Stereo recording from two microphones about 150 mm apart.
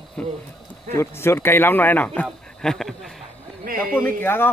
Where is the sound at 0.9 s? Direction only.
15° left (ahead or behind).